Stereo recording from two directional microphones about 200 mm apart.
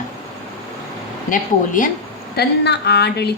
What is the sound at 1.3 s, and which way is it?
Speech, 40° left (ahead or behind).